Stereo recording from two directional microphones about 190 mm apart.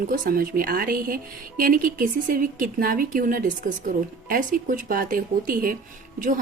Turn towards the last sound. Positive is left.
turn(degrees=-45)  # may be behind; listen again after turning